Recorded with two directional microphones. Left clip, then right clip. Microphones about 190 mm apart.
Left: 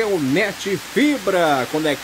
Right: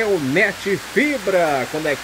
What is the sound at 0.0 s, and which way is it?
Speech, 15° left (ahead or behind).